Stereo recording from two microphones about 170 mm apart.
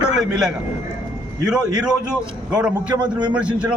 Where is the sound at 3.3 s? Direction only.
5° right (ahead or behind).